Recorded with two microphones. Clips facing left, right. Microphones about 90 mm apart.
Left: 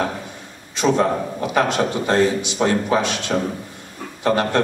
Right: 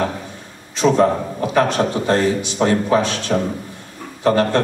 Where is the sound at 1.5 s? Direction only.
20° left (ahead or behind).